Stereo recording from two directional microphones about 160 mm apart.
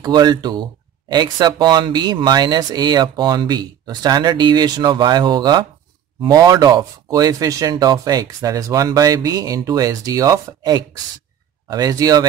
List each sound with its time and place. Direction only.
0.0 s speech: 25° right (ahead or behind)